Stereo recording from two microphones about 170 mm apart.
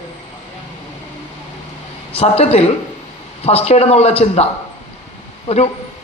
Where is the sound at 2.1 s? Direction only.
35° left (ahead or behind).